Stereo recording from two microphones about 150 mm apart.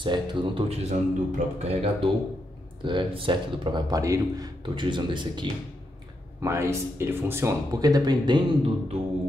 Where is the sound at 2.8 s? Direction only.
35° right (ahead or behind).